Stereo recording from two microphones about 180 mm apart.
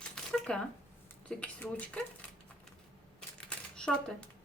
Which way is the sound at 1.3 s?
5° left (ahead or behind).